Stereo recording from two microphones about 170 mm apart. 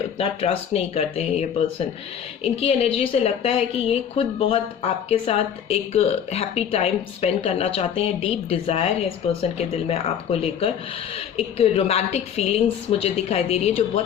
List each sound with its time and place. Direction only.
0.2 s a woman's voice: 35° left (ahead or behind)